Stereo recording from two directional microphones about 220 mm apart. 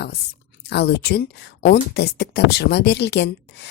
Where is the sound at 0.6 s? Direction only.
50° left (ahead or behind).